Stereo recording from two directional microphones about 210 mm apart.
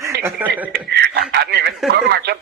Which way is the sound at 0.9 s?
50° right (ahead or behind).